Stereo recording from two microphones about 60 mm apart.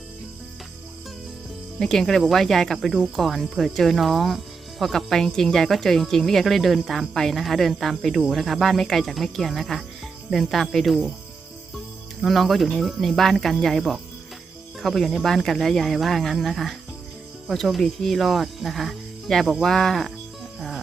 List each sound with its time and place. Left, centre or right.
1.8 s speech: centre
12.2 s speech: centre
19.6 s cricket: centre
20.6 s music: centre